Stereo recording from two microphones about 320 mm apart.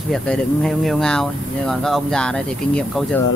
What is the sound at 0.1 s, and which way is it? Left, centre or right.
Speech, centre.